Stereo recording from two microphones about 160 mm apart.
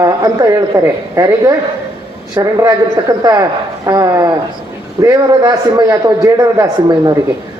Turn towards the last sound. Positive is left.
turn(degrees=-25)  # may be behind; listen again after turning